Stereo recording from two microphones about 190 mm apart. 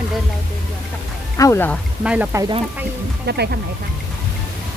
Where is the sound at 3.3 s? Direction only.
60° right (ahead or behind).